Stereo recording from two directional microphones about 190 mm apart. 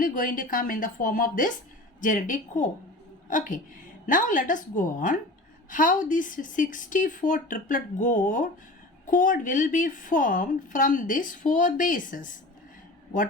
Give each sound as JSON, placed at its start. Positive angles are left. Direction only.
{"t": 0.0, "sound": "a woman's voice", "side_deg": 45}